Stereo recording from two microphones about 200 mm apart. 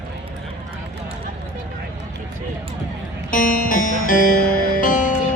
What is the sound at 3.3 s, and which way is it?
A man's voice, 40° left (ahead or behind).